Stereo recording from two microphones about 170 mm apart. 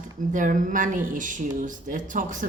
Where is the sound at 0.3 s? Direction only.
50° right (ahead or behind).